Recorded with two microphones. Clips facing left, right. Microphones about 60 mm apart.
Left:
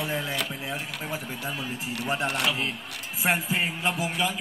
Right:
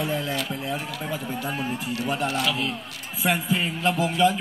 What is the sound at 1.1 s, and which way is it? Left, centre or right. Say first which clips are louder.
Speech: right 5 dB; right.